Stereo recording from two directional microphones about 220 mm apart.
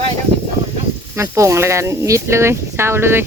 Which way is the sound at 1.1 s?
10° right (ahead or behind).